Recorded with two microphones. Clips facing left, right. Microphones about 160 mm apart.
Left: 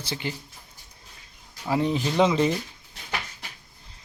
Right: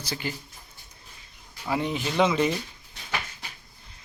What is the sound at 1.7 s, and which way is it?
Speech, 35° left (ahead or behind).